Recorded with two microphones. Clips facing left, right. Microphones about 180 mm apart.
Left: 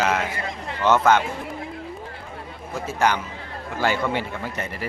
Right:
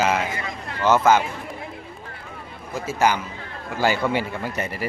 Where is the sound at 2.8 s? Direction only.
5° right (ahead or behind).